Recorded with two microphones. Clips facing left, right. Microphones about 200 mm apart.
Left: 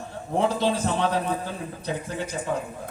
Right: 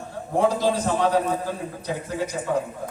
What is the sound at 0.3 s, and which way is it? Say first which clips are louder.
Speech: right 2 dB; 25° left (ahead or behind).